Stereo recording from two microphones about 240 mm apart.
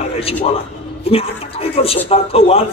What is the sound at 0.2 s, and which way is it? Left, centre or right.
A man's voice, left.